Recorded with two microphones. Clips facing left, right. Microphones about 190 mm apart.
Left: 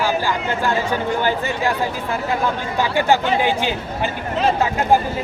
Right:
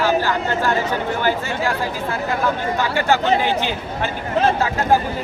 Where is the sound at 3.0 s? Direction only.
15° left (ahead or behind).